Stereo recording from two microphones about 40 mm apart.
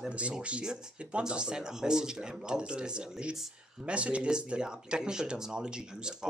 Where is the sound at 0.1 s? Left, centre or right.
Right.